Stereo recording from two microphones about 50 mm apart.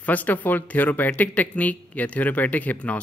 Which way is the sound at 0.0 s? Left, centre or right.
Left.